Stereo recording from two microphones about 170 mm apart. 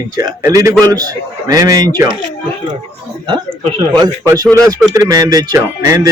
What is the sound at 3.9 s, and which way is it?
A man's voice, 25° right (ahead or behind).